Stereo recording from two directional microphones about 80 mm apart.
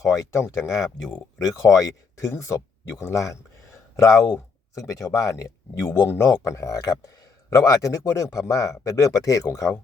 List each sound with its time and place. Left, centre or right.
0.0 s speech: left
0.8 s speech: centre
1.4 s speech: left